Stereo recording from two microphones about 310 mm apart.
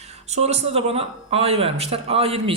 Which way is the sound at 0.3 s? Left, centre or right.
Right.